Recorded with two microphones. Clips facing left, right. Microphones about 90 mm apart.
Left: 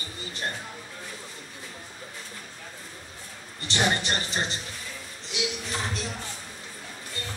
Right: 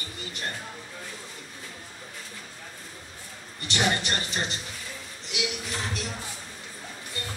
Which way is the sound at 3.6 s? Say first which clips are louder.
Left 1 dB; 25° left (ahead or behind).